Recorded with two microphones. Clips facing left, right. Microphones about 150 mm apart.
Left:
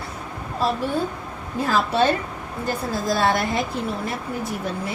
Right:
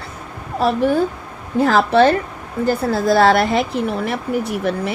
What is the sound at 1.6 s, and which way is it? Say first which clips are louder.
Speech: right 7 dB; 75° right (ahead or behind).